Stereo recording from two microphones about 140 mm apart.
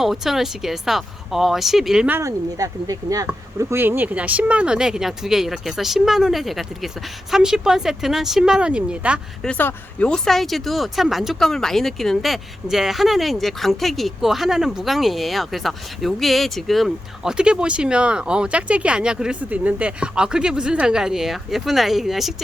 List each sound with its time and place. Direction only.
0.0 s speech: centre (ahead or behind)
2.2 s speech: 25° right (ahead or behind); by 9.2 s 10° right (ahead or behind)
9.4 s speech: 10° left (ahead or behind)